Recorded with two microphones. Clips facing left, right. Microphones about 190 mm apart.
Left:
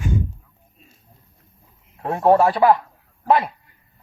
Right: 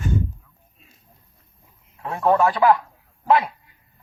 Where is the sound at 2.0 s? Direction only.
45° left (ahead or behind).